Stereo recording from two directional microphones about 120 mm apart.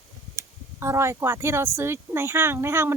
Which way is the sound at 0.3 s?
25° right (ahead or behind).